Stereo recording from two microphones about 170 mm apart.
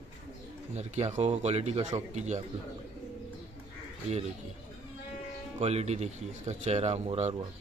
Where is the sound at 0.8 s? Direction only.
40° right (ahead or behind).